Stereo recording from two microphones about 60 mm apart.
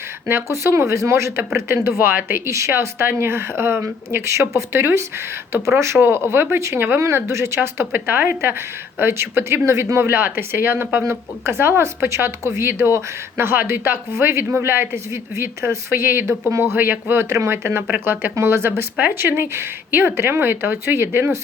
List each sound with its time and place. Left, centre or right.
0.3 s speech: right
1.5 s speech: right
2.5 s speech: right
6.6 s speech: right
16.7 s speech: right
17.2 s speech: right